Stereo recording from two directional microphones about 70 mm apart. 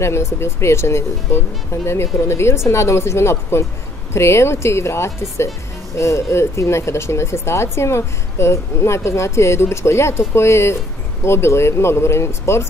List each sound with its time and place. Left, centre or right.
0.0 s speech: left